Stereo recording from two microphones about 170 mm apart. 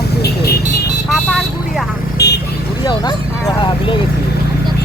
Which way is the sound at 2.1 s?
75° left (ahead or behind).